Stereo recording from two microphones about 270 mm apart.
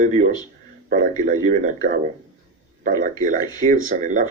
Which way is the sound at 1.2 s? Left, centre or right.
Right.